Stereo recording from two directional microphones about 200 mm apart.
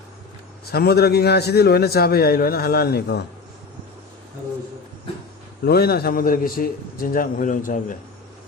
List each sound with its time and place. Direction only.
0.7 s a man's voice: 50° left (ahead or behind)
5.6 s a man's voice: 50° left (ahead or behind)